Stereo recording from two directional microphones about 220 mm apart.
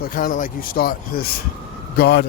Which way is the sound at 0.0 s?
40° left (ahead or behind).